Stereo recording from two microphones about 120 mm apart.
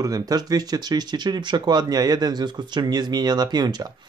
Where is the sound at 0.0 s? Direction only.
30° right (ahead or behind).